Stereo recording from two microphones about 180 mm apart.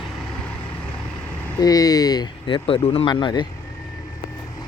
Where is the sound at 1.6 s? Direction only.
20° left (ahead or behind).